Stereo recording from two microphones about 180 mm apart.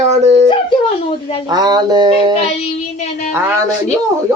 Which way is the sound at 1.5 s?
25° right (ahead or behind).